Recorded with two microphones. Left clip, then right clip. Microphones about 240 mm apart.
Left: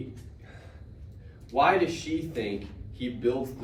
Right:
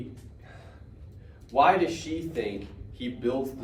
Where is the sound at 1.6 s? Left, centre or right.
Centre.